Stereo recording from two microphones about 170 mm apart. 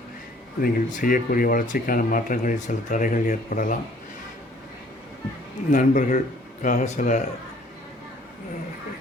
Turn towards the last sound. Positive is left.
turn(degrees=45)  # may be behind; listen again after turning